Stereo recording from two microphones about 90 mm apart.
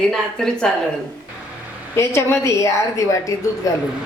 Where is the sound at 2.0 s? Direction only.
30° left (ahead or behind).